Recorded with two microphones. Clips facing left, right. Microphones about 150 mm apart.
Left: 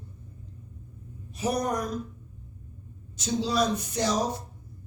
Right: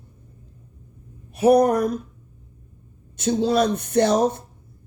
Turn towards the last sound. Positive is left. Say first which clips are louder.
# right 9 dB
turn(degrees=-55)  # may be behind; listen again after turning